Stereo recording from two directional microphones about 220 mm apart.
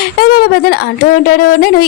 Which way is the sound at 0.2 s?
45° left (ahead or behind).